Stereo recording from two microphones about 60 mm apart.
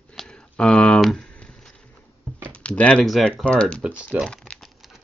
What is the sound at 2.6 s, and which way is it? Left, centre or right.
Speech, left.